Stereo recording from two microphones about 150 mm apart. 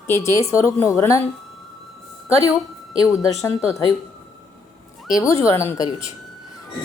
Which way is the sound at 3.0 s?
20° left (ahead or behind).